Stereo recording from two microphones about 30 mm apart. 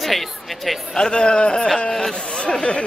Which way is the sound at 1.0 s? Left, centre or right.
Left.